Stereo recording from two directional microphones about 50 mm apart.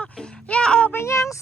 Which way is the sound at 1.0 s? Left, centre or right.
Left.